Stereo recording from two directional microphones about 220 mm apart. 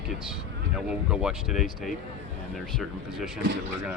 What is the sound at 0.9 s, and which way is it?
Speech, 5° right (ahead or behind).